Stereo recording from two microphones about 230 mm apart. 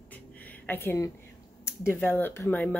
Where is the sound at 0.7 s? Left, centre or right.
Centre.